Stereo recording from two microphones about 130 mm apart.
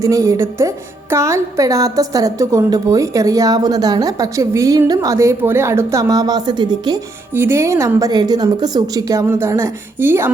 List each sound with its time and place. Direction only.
0.0 s a woman's voice: 25° right (ahead or behind)
7.3 s a woman's voice: 20° right (ahead or behind)